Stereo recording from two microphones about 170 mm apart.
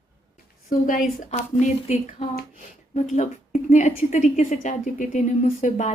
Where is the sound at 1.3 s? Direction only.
40° left (ahead or behind).